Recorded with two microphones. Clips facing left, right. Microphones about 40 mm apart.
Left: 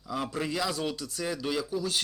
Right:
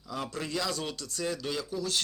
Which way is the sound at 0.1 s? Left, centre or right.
Centre.